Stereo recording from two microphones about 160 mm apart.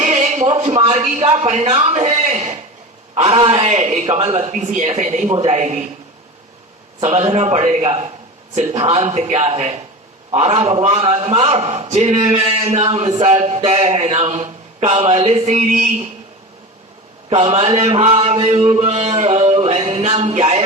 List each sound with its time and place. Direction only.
0.0 s a man's voice: 50° right (ahead or behind)
7.0 s a man's voice: 45° right (ahead or behind)
17.2 s a man's voice: 40° right (ahead or behind)